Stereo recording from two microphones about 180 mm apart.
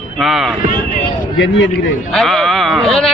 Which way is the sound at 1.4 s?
75° left (ahead or behind).